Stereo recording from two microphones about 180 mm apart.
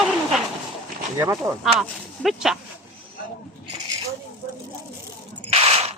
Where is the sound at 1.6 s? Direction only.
Centre (ahead or behind).